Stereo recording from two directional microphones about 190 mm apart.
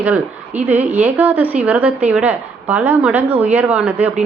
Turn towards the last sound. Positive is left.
turn(degrees=-10)  # may be behind; listen again after turning